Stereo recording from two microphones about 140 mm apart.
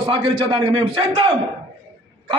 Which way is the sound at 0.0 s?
40° right (ahead or behind).